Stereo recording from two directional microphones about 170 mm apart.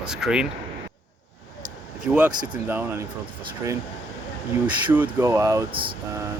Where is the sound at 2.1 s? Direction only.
10° right (ahead or behind).